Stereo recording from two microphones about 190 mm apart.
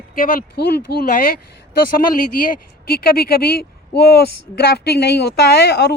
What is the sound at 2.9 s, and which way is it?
Speech, 55° left (ahead or behind).